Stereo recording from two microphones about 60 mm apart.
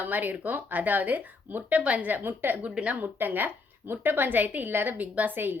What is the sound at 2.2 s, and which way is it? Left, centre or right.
Speech, right.